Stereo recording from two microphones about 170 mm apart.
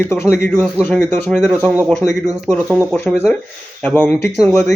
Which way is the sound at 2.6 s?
10° right (ahead or behind).